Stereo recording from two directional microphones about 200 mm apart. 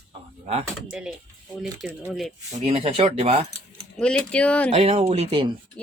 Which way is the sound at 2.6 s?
30° right (ahead or behind).